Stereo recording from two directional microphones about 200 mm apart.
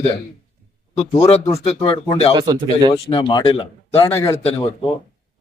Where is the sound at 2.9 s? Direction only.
25° left (ahead or behind).